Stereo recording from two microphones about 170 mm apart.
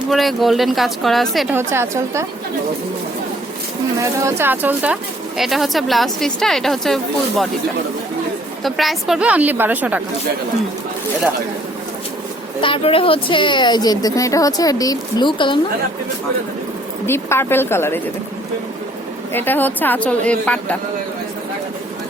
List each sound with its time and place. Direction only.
0.1 s a woman's voice: centre (ahead or behind)
1.5 s a woman's voice: 15° right (ahead or behind)
3.9 s a woman's voice: 15° right (ahead or behind); by 7.4 s centre (ahead or behind)
8.6 s a woman's voice: centre (ahead or behind)
12.6 s a woman's voice: 30° left (ahead or behind)
17.1 s a woman's voice: 15° left (ahead or behind)
19.3 s a woman's voice: 10° left (ahead or behind)